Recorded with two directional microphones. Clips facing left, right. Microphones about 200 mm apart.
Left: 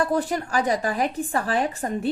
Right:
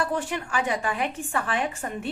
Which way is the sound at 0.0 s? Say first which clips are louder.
Left 5 dB; 35° left (ahead or behind).